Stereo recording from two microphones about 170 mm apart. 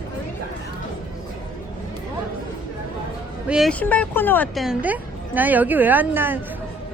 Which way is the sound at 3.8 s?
10° left (ahead or behind).